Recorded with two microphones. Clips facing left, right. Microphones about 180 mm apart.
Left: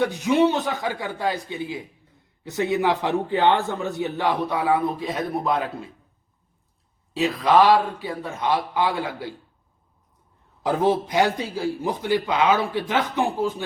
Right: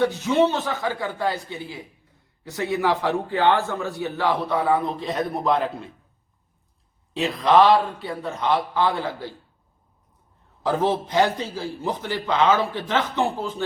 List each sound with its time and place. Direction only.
0.0 s a man's voice: 15° left (ahead or behind)
7.2 s a man's voice: 10° left (ahead or behind)
10.6 s a man's voice: 15° left (ahead or behind)